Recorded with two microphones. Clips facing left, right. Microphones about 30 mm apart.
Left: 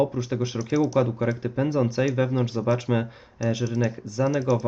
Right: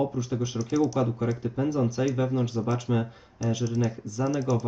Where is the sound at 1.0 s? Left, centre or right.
Left.